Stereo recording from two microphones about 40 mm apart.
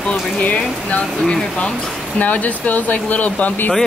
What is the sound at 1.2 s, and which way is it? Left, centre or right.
Speech, centre.